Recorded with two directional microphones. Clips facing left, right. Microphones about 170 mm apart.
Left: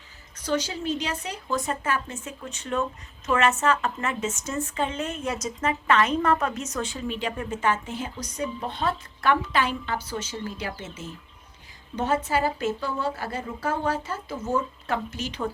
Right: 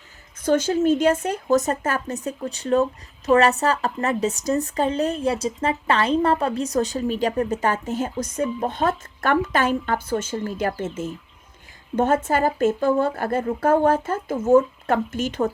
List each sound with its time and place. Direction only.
0.4 s speech: 50° right (ahead or behind)